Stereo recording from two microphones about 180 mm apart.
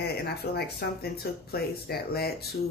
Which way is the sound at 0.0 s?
60° left (ahead or behind).